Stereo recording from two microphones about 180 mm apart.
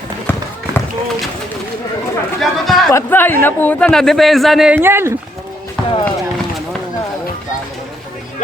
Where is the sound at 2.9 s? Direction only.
10° left (ahead or behind); by 5.1 s 15° right (ahead or behind).